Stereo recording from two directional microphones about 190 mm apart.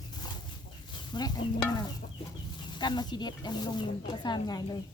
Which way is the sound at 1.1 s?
20° left (ahead or behind).